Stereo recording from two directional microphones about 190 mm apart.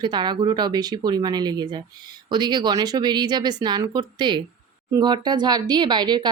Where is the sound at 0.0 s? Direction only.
25° right (ahead or behind).